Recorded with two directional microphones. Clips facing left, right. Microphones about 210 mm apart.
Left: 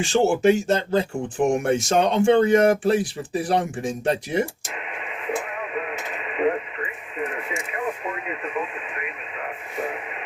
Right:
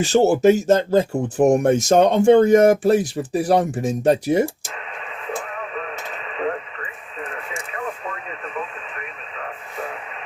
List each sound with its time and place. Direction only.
0.0 s speech: 40° right (ahead or behind)
5.2 s radio: 15° left (ahead or behind)